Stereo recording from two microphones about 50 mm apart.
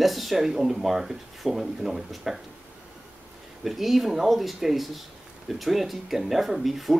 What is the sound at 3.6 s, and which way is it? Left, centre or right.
Speech, centre.